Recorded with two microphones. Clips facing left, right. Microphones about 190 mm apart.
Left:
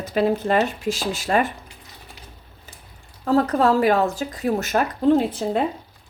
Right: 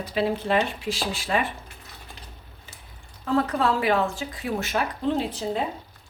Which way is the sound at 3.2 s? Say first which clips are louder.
Left 5 dB; 40° left (ahead or behind).